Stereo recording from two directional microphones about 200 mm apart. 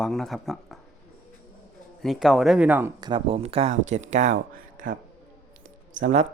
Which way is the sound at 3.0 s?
25° right (ahead or behind).